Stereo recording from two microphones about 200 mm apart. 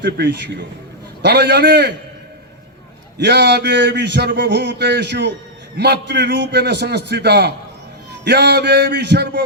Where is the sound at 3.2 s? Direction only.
60° right (ahead or behind).